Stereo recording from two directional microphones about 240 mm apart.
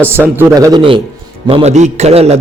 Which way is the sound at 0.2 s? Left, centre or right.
Centre.